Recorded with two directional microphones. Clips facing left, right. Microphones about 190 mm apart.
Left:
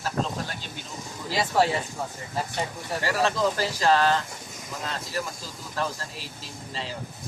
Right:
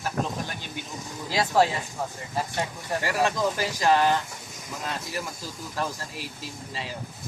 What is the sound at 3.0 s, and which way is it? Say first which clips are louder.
Speech: left 1 dB; 15° right (ahead or behind).